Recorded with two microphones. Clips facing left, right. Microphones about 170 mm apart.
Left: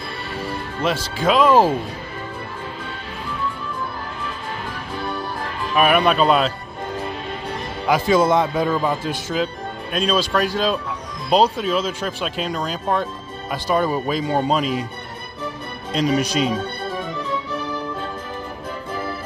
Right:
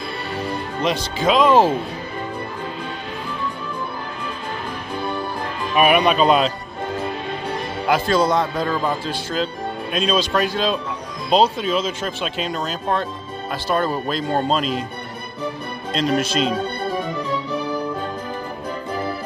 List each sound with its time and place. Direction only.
0.7 s speech: 5° left (ahead or behind)
5.8 s speech: 10° right (ahead or behind)
6.0 s speech: centre (ahead or behind)
7.9 s speech: 15° left (ahead or behind)
8.5 s speech: 5° left (ahead or behind)
13.5 s speech: 15° left (ahead or behind)
15.9 s speech: 10° left (ahead or behind)